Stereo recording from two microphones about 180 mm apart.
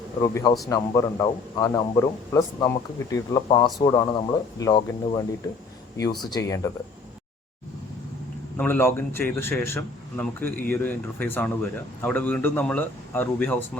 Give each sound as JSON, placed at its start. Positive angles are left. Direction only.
{"t": 0.2, "sound": "speech", "side_deg": 20}
{"t": 6.3, "sound": "a man's voice", "side_deg": 15}
{"t": 8.5, "sound": "a man's voice", "side_deg": 10}